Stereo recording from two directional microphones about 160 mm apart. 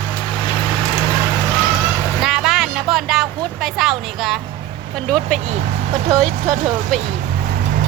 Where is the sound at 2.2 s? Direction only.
5° right (ahead or behind).